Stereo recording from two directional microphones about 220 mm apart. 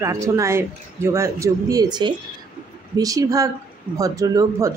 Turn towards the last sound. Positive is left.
turn(degrees=-15)  # may be behind; listen again after turning